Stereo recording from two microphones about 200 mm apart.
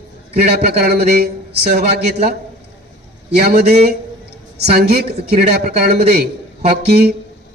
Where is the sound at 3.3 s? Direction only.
50° right (ahead or behind).